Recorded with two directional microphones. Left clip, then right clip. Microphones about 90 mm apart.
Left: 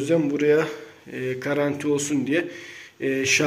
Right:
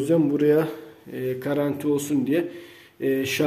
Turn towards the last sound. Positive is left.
turn(degrees=-40)  # may be behind; listen again after turning